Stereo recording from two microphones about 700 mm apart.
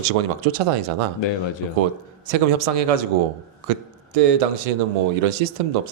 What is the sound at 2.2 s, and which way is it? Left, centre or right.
A man's voice, right.